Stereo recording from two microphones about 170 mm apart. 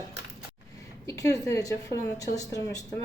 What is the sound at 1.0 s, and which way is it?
A woman's voice, 20° left (ahead or behind).